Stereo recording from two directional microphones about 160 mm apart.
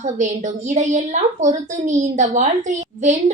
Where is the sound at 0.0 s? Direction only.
50° right (ahead or behind).